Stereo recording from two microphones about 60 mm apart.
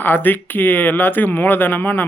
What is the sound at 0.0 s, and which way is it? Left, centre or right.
Speech, left.